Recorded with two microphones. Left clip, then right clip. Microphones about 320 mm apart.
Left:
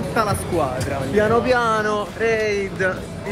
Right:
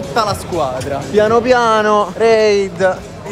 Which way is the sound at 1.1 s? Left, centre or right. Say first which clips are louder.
Right 6 dB; right.